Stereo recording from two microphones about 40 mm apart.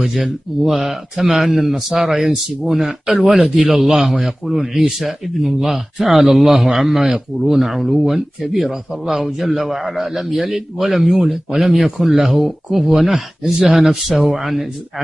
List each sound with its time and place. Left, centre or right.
0.0 s speech: centre
3.1 s speech: right
3.3 s a man's voice: centre
5.0 s a man's voice: centre
11.1 s a man's voice: centre
11.6 s speech: centre